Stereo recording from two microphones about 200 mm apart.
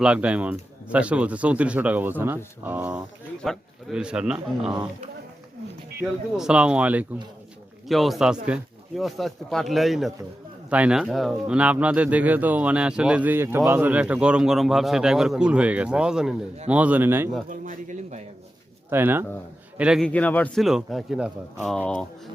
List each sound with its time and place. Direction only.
0.0 s a man's voice: 5° right (ahead or behind)
6.0 s a man's voice: 5° right (ahead or behind)
17.5 s speech: 40° right (ahead or behind)
18.9 s a man's voice: 10° right (ahead or behind)
20.1 s a man's voice: 5° left (ahead or behind)